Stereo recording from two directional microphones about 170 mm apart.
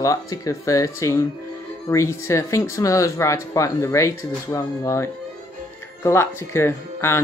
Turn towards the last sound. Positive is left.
turn(degrees=15)  # may be behind; listen again after turning